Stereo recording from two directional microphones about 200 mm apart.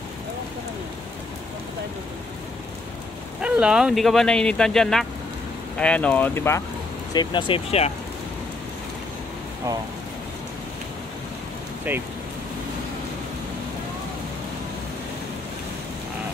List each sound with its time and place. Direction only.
3.3 s speech: 5° right (ahead or behind); by 6.6 s 10° left (ahead or behind)
7.2 s speech: 25° left (ahead or behind)
11.9 s speech: 10° right (ahead or behind)